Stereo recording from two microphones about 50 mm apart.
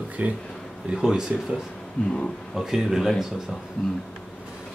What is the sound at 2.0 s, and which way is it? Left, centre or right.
Speech, centre.